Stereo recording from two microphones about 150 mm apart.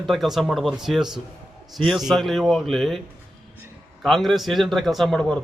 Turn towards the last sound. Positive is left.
turn(degrees=5)  # may be behind; listen again after turning